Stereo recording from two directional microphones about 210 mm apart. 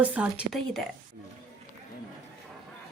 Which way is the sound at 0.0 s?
5° right (ahead or behind).